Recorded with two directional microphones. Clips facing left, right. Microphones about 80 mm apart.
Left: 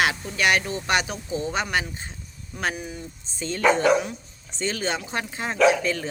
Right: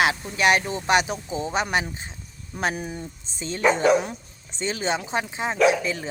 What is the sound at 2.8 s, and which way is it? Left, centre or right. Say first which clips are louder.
Speech: right 3 dB; right.